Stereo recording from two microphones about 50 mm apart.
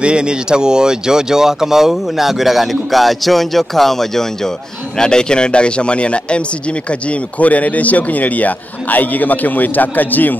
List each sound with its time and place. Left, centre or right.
0.0 s a man's voice: centre; by 10.3 s left